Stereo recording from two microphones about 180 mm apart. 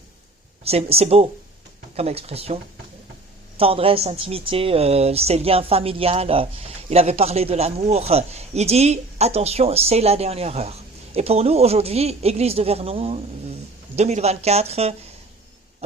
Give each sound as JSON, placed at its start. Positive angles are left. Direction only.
{"t": 0.6, "sound": "a woman's voice", "side_deg": -35}
{"t": 3.6, "sound": "a woman's voice", "side_deg": -30}